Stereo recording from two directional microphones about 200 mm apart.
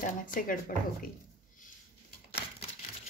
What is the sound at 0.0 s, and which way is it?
Speech, 45° left (ahead or behind).